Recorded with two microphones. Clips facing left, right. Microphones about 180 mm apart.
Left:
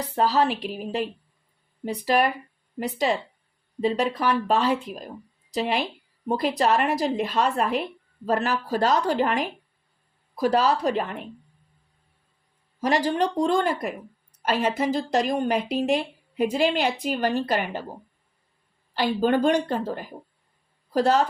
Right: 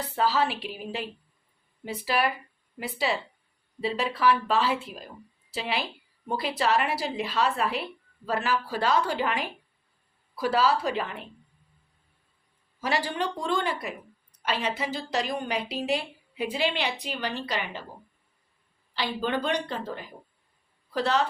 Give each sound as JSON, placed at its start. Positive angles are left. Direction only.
{"t": 0.0, "sound": "a woman's voice", "side_deg": 40}
{"t": 12.8, "sound": "speech", "side_deg": 40}
{"t": 18.9, "sound": "speech", "side_deg": 45}